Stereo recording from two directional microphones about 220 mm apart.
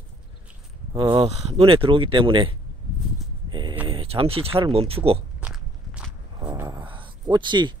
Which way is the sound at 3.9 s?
25° right (ahead or behind).